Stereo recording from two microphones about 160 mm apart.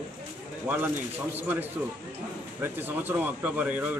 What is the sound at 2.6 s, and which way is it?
Speech, 10° right (ahead or behind).